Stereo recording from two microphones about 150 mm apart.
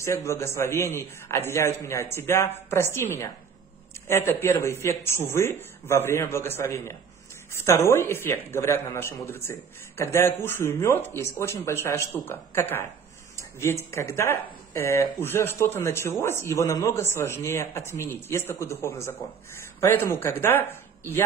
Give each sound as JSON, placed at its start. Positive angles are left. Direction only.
{"t": 0.0, "sound": "a man's voice", "side_deg": 20}